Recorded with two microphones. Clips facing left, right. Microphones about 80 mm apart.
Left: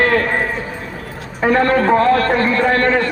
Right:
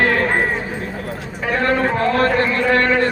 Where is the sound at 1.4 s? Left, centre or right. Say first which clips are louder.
Left 4 dB; left.